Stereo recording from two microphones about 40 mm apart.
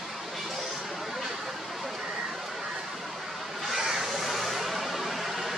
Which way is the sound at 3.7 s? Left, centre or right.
Centre.